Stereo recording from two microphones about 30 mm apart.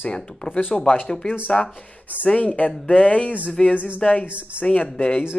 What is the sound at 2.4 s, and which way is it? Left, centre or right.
Speech, left.